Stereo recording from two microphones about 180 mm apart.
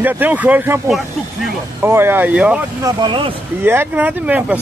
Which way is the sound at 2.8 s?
25° right (ahead or behind).